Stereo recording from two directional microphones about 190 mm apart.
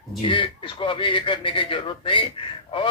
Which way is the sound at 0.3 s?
25° left (ahead or behind).